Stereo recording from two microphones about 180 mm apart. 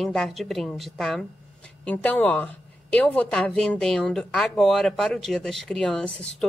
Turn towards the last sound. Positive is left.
turn(degrees=5)  # may be behind; listen again after turning